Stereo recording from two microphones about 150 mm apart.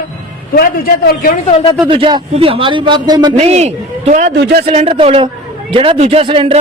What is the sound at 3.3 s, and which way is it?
A man's voice, 45° right (ahead or behind).